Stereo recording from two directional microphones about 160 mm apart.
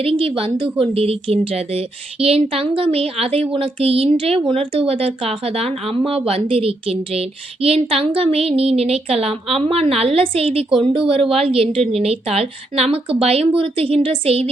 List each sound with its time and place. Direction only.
0.0 s a woman's voice: 35° right (ahead or behind)